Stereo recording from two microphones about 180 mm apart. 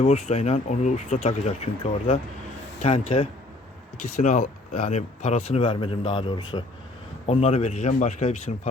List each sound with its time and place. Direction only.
0.0 s speech: 40° left (ahead or behind)